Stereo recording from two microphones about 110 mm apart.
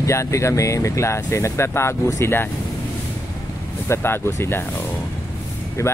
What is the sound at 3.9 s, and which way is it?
Speech, 25° left (ahead or behind).